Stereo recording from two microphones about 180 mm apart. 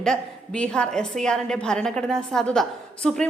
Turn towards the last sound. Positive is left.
turn(degrees=5)  # may be behind; listen again after turning